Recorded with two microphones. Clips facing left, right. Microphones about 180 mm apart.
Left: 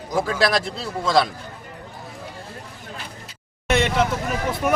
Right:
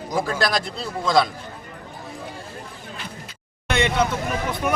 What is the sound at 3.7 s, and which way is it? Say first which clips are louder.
Speech: left 1 dB; centre (ahead or behind).